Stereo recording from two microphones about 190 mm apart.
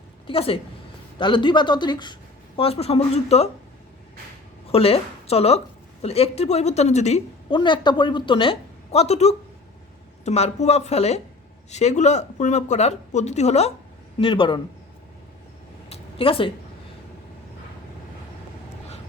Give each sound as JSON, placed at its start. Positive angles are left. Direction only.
{"t": 0.3, "sound": "speech", "side_deg": 30}
{"t": 4.7, "sound": "a woman's voice", "side_deg": 30}
{"t": 15.9, "sound": "a sound", "side_deg": 30}